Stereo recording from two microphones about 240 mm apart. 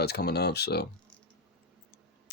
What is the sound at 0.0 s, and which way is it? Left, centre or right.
Speech, left.